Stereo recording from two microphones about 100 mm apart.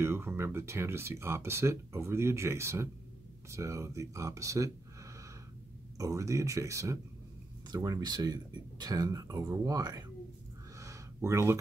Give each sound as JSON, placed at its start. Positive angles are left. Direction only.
{"t": 0.0, "sound": "speech", "side_deg": -25}
{"t": 5.9, "sound": "speech", "side_deg": -30}
{"t": 10.8, "sound": "a sound", "side_deg": -30}